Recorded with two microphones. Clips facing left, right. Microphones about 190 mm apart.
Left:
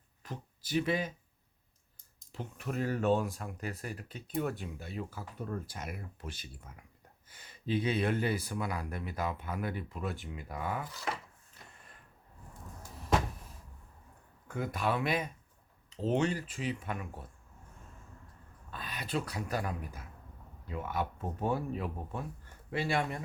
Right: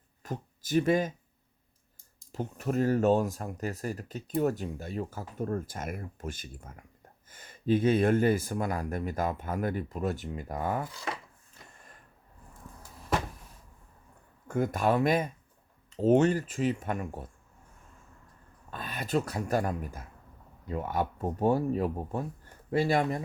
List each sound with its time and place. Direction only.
0.2 s speech: 45° right (ahead or behind)
2.3 s speech: 40° right (ahead or behind)
14.4 s speech: 45° right (ahead or behind)
18.7 s speech: 45° right (ahead or behind)